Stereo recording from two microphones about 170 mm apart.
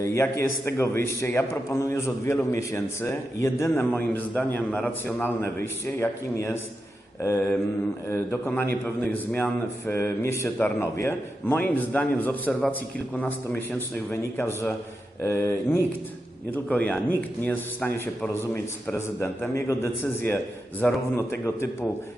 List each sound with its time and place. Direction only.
0.0 s a man's voice: 15° left (ahead or behind)